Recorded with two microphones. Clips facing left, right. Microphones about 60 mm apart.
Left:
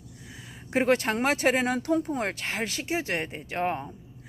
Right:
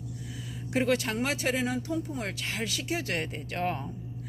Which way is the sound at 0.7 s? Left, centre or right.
Left.